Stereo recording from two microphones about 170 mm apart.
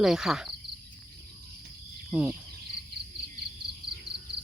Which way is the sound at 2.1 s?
5° right (ahead or behind).